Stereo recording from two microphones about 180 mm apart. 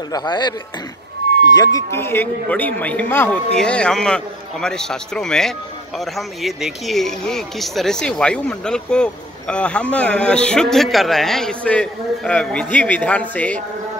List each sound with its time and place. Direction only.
0.1 s speech: 25° left (ahead or behind); by 13.6 s 10° left (ahead or behind)